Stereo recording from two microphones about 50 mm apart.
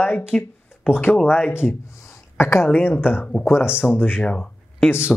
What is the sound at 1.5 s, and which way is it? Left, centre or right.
Speech, left.